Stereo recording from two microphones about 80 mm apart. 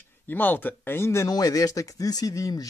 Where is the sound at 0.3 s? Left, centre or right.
Left.